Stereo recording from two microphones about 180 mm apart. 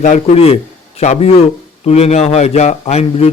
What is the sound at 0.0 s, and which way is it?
A man's voice, 35° left (ahead or behind).